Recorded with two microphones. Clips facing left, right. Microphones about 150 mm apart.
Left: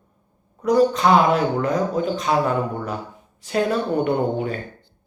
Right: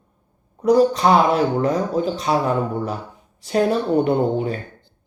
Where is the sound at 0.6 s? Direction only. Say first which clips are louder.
Right 2 dB; 35° right (ahead or behind).